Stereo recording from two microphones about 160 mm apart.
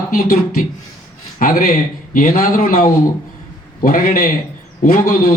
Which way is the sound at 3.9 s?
60° left (ahead or behind).